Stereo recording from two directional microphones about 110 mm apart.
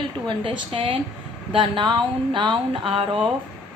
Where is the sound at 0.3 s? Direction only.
50° right (ahead or behind).